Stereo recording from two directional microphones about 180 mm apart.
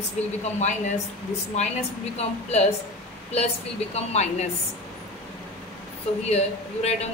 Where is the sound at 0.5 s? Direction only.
40° left (ahead or behind).